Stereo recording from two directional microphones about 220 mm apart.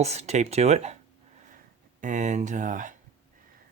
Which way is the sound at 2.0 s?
35° right (ahead or behind).